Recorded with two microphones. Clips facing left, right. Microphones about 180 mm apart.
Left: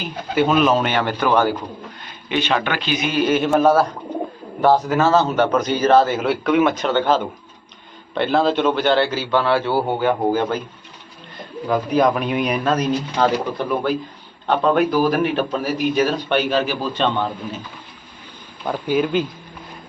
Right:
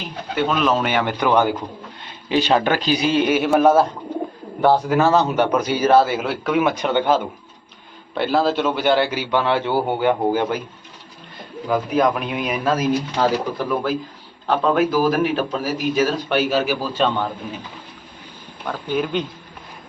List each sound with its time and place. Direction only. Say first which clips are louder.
0.0 s speech: left 3 dB; 5° left (ahead or behind)
0.9 s a man's voice: even; 15° right (ahead or behind)
2.0 s a man's voice: right 3 dB; 35° right (ahead or behind)
3.2 s a man's voice: left 1 dB; 10° right (ahead or behind)
11.7 s a man's voice: left 1 dB; centre (ahead or behind)
18.9 s a man's voice: left 3 dB; centre (ahead or behind)